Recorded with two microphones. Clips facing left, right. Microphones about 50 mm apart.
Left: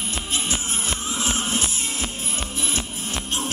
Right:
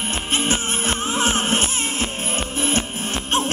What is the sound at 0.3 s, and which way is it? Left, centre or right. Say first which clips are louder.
Music: right 6 dB; right.